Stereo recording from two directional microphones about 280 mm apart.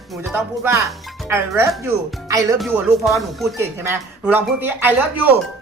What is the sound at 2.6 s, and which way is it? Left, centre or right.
Speech, centre.